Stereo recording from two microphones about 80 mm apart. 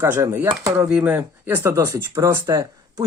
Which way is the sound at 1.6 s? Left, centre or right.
Right.